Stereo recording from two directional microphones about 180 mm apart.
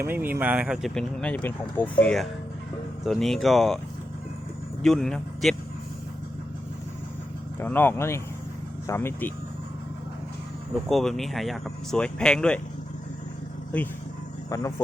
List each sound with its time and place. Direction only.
0.0 s speech: 10° right (ahead or behind)
4.8 s speech: centre (ahead or behind)
7.6 s speech: 10° left (ahead or behind)
10.8 s speech: centre (ahead or behind)
13.7 s speech: 5° left (ahead or behind)
14.5 s speech: 20° left (ahead or behind)